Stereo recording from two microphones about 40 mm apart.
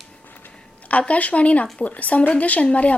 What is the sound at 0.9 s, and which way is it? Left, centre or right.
A woman's voice, left.